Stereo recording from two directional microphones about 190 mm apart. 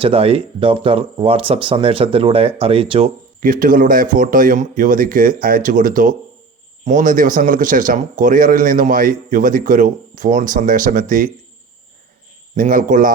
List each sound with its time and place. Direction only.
0.0 s speech: 30° right (ahead or behind)
3.4 s a man's voice: 45° right (ahead or behind)
12.5 s a man's voice: 45° right (ahead or behind)